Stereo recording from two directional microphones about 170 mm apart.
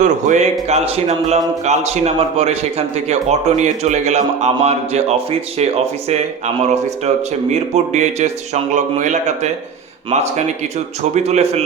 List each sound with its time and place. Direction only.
0.0 s a man's voice: 45° right (ahead or behind)